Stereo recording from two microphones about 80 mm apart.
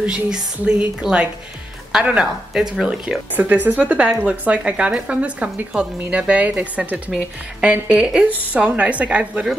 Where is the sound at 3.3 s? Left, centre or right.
Right.